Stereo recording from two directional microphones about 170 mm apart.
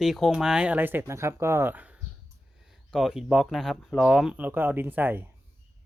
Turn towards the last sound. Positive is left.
turn(degrees=-10)  # may be behind; listen again after turning